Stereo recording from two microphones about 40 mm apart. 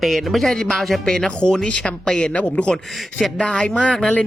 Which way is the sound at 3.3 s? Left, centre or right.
Centre.